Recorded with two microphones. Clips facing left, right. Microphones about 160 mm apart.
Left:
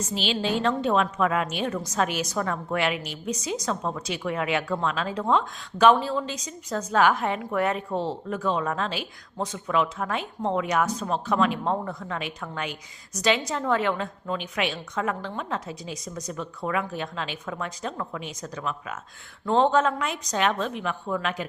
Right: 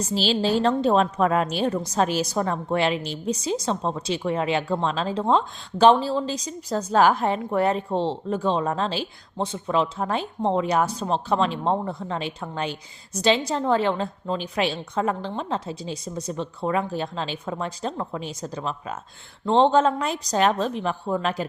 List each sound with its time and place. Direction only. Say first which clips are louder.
0.0 s a woman's voice: right 4 dB; 35° right (ahead or behind)